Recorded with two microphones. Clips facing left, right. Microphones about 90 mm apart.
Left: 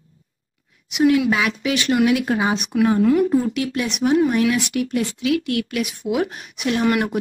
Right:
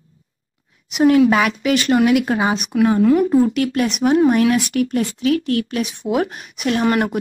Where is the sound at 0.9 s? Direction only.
40° right (ahead or behind).